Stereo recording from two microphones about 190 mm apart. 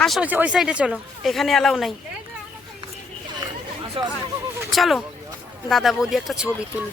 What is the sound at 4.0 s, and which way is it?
Speech, 30° right (ahead or behind).